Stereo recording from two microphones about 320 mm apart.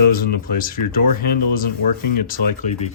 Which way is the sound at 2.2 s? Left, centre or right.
Left.